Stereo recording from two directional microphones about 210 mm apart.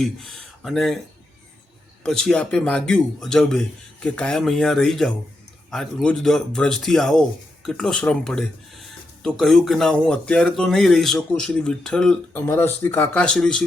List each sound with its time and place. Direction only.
0.0 s speech: centre (ahead or behind)
2.0 s speech: 5° left (ahead or behind)